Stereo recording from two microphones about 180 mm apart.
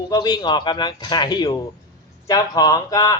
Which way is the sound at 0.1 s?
25° left (ahead or behind).